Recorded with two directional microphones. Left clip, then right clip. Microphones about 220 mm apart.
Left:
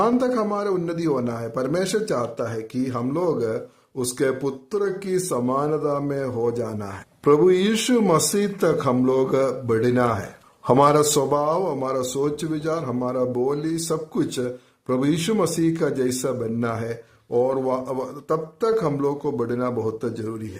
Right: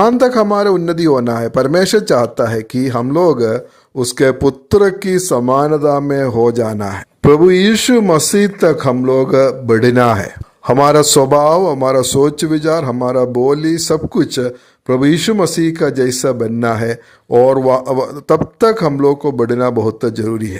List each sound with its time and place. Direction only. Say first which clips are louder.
0.0 s a man's voice: right 10 dB; 35° right (ahead or behind)